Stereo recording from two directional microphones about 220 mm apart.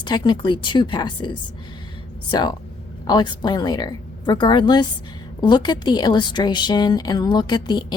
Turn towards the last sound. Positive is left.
turn(degrees=20)  # may be behind; listen again after turning